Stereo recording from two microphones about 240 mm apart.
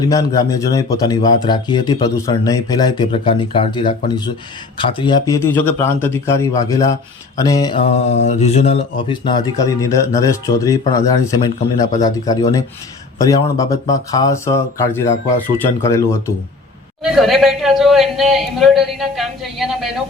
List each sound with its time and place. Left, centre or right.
0.0 s mantra: centre
17.0 s a man's voice: centre